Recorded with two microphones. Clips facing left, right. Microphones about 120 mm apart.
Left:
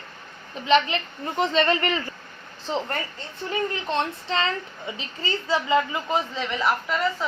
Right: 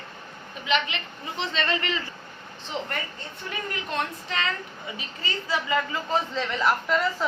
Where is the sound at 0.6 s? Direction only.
35° left (ahead or behind).